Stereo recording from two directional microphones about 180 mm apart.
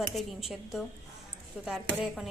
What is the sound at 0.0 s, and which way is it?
A woman's voice, centre (ahead or behind).